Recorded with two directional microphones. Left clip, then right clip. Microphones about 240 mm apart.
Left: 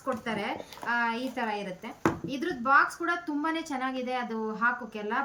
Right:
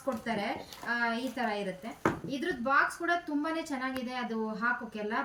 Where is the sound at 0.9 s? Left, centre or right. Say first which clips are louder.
Left 3 dB; centre.